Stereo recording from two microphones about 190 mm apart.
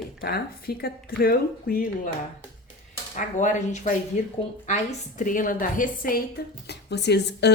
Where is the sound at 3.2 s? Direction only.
40° left (ahead or behind).